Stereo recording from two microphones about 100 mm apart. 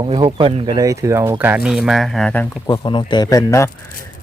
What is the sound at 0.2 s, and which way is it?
Speech, 55° right (ahead or behind).